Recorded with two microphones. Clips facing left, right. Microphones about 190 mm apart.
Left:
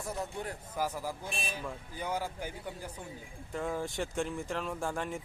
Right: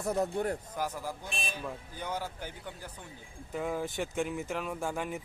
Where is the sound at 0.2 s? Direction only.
45° right (ahead or behind).